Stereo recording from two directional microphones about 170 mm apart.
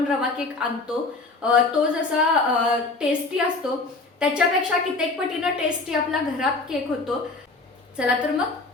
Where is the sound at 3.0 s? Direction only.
5° right (ahead or behind).